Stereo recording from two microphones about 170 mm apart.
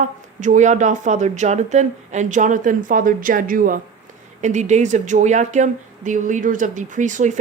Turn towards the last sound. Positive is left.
turn(degrees=-45)  # may be behind; listen again after turning